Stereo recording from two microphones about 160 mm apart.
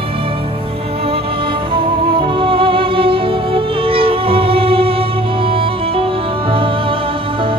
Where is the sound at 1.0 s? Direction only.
35° right (ahead or behind).